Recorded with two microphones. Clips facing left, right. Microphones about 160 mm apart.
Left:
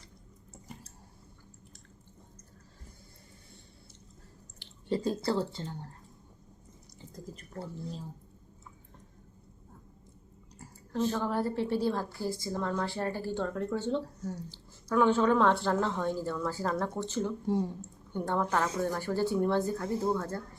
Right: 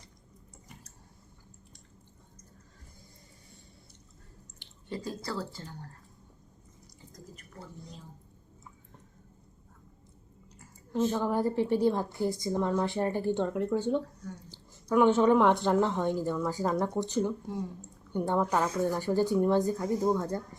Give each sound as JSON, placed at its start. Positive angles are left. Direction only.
{"t": 4.9, "sound": "speech", "side_deg": 30}
{"t": 7.0, "sound": "drip", "side_deg": 30}
{"t": 7.6, "sound": "speech", "side_deg": 30}
{"t": 10.9, "sound": "a woman's voice", "side_deg": -15}